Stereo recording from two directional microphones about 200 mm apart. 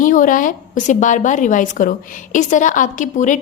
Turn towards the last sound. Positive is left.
turn(degrees=40)  # may be behind; listen again after turning